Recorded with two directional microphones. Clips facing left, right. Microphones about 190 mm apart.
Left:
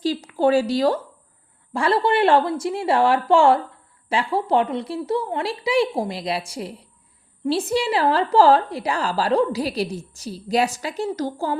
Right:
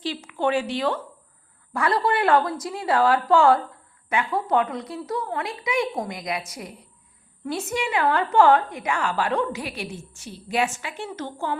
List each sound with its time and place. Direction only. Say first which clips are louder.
0.0 s a woman's voice: left 6 dB; 40° left (ahead or behind)
1.7 s a woman's voice: left 3 dB; 30° left (ahead or behind)